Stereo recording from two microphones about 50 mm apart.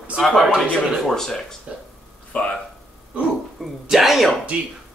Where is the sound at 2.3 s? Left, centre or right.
Left.